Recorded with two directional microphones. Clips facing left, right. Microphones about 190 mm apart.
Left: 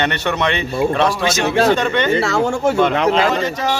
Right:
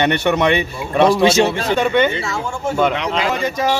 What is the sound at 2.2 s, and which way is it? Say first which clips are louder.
Speech: left 7 dB; 70° left (ahead or behind).